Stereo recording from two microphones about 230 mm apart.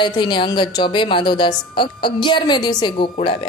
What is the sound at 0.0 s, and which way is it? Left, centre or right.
Speech, centre.